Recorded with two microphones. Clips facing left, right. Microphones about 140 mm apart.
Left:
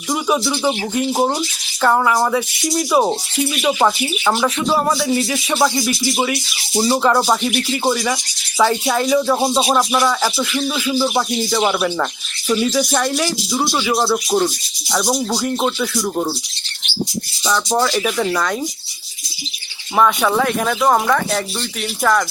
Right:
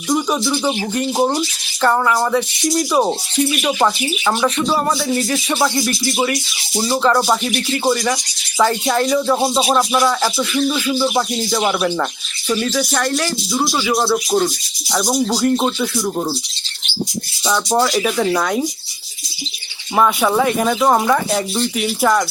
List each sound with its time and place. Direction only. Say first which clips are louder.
0.1 s speech: right 1 dB; 5° left (ahead or behind)
17.4 s speech: right 1 dB; 5° right (ahead or behind)
20.0 s speech: even; 5° right (ahead or behind)